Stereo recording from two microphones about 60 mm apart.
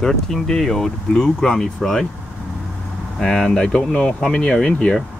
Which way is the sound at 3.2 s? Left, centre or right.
Centre.